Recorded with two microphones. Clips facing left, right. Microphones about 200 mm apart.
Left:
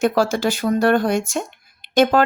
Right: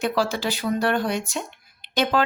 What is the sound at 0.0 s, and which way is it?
Speech, 45° left (ahead or behind).